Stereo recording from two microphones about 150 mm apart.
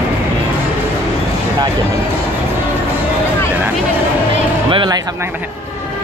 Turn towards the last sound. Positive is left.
turn(degrees=-35)  # may be behind; listen again after turning